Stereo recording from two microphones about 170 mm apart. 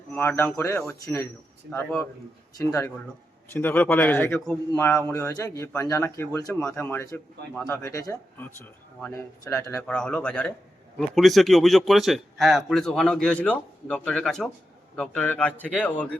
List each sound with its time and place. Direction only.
0.1 s a man's voice: 10° left (ahead or behind)
9.4 s speech: 20° left (ahead or behind)
9.8 s a man's voice: 5° left (ahead or behind)